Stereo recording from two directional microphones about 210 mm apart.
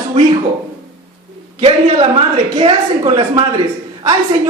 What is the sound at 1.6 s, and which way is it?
A man's voice, 25° right (ahead or behind).